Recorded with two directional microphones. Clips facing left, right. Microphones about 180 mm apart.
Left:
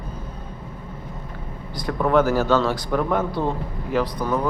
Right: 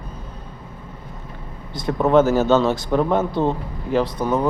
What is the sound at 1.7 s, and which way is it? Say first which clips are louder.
Speech: right 3 dB; 25° right (ahead or behind).